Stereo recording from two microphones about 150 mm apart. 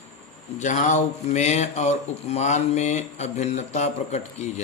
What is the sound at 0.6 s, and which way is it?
Mantra, 50° left (ahead or behind).